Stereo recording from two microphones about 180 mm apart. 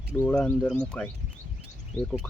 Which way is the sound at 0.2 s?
10° left (ahead or behind).